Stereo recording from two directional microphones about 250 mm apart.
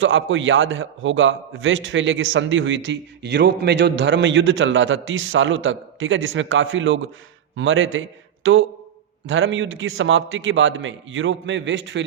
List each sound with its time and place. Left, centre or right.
0.0 s a man's voice: right